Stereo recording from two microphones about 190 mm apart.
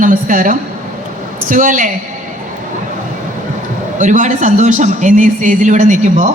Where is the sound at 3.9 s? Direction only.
40° right (ahead or behind).